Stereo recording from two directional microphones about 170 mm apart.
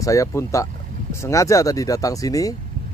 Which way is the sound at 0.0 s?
20° left (ahead or behind).